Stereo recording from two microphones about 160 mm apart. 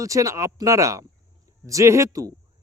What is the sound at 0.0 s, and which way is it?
A man's voice, 20° right (ahead or behind).